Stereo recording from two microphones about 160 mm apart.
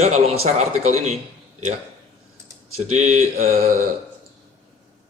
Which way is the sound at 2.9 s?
45° right (ahead or behind).